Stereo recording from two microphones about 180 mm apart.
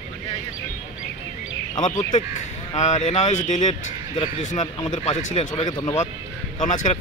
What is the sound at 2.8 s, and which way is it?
Speech, 40° left (ahead or behind).